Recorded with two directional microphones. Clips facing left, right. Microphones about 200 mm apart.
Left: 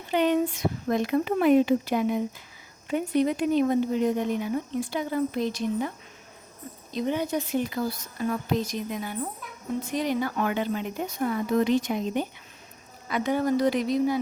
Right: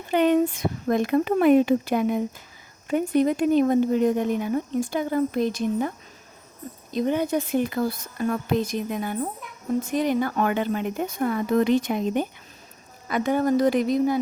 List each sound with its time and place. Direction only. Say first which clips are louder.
0.1 s speech: right 4 dB; 50° right (ahead or behind)
6.9 s speech: right 4 dB; 50° right (ahead or behind)